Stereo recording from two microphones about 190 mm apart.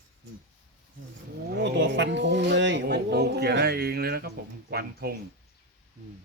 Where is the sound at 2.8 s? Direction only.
60° right (ahead or behind).